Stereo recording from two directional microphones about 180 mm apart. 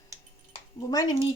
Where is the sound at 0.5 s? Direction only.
25° left (ahead or behind).